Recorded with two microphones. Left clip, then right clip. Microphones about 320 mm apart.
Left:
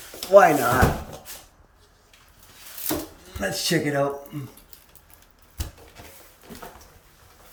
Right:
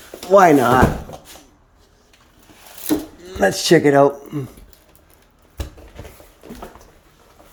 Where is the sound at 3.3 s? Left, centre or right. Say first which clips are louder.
Right 11 dB; centre.